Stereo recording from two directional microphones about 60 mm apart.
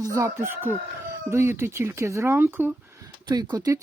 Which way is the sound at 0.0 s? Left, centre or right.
Right.